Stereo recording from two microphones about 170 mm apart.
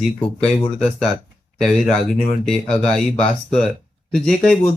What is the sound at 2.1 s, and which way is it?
Speech, centre (ahead or behind).